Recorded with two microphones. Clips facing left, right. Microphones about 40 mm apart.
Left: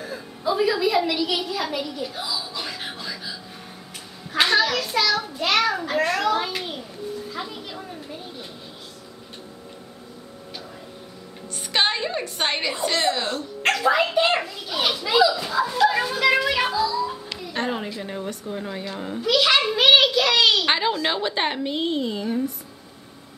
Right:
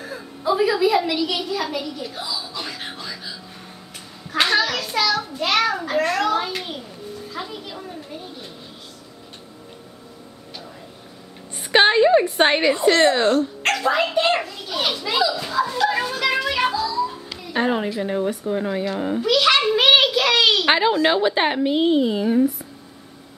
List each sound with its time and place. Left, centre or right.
0.0 s a woman's voice: centre
7.2 s music: centre
11.7 s a woman's voice: right
13.6 s children playing: centre
19.2 s a child's voice: centre